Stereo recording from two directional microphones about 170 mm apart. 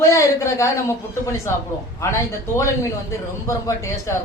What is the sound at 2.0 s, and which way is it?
A woman's voice, 15° left (ahead or behind).